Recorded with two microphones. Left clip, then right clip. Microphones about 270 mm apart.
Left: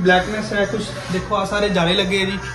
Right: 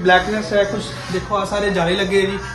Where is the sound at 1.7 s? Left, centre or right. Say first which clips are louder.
Right 1 dB; centre.